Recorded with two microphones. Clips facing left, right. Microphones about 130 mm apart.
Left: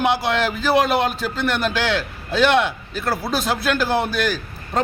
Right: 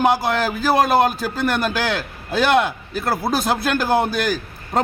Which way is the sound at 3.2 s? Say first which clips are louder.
Right 2 dB; 50° right (ahead or behind).